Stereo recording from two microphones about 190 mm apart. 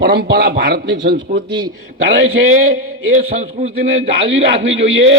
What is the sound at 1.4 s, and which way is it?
Speech, 25° right (ahead or behind).